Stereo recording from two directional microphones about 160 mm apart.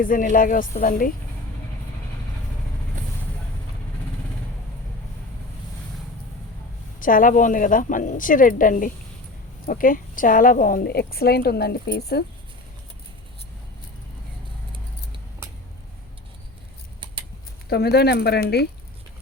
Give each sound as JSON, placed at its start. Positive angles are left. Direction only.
{"t": 0.0, "sound": "a woman's voice", "side_deg": 60}
{"t": 7.0, "sound": "a woman's voice", "side_deg": 60}
{"t": 17.7, "sound": "speech", "side_deg": 85}